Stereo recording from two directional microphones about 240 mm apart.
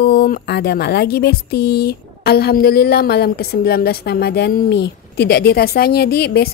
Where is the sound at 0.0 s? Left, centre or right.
Left.